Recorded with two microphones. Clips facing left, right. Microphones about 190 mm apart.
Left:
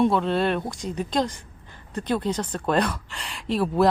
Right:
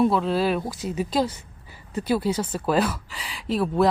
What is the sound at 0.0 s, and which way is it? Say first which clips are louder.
A woman's voice: even; centre (ahead or behind).